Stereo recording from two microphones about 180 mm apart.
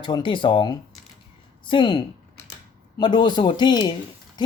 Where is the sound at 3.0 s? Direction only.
25° left (ahead or behind).